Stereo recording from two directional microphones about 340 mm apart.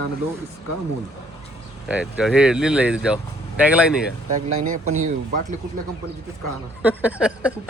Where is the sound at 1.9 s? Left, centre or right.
Centre.